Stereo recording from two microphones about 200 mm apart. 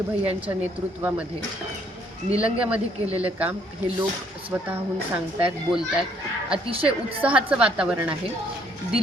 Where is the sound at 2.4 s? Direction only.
5° right (ahead or behind).